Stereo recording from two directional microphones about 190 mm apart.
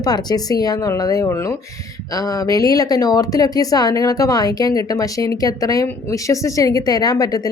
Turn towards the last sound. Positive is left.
turn(degrees=20)  # may be behind; listen again after turning